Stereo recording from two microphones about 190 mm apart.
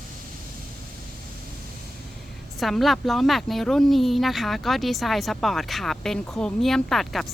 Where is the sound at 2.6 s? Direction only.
Centre (ahead or behind).